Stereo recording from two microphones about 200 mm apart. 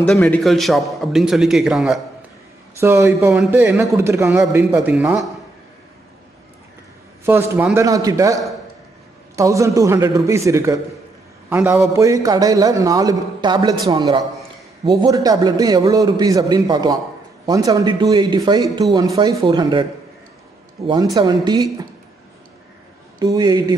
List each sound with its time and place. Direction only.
0.0 s a man's voice: 5° left (ahead or behind); by 5.2 s 10° right (ahead or behind)
7.2 s a man's voice: 10° right (ahead or behind)
20.8 s a man's voice: 20° right (ahead or behind)
23.1 s a man's voice: 20° right (ahead or behind)